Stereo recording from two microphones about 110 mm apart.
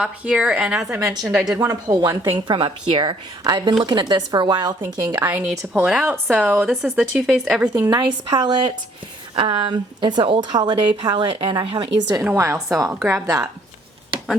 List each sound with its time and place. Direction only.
0.0 s a woman's voice: 10° right (ahead or behind)
0.9 s a woman's voice: 25° right (ahead or behind)
1.2 s speech: 5° right (ahead or behind)
1.5 s a woman's voice: 25° right (ahead or behind)
2.0 s a woman's voice: 40° right (ahead or behind)
5.8 s speech: 5° right (ahead or behind)
6.1 s a woman's voice: 15° right (ahead or behind)
6.7 s speech: 5° right (ahead or behind)
7.7 s a woman's voice: 40° right (ahead or behind)
12.2 s a woman's voice: 25° right (ahead or behind)